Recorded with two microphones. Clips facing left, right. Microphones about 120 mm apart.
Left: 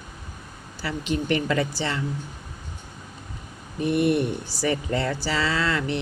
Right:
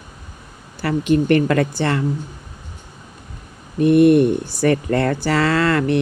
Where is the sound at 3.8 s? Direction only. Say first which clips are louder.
Right 10 dB; 55° right (ahead or behind).